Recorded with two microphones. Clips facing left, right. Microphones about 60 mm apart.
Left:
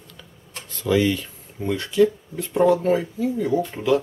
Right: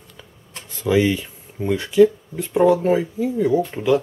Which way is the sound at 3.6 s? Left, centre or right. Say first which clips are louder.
Right 2 dB; centre.